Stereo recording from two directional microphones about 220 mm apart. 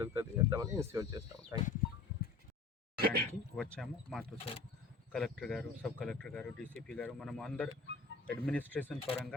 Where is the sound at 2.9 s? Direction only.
45° right (ahead or behind).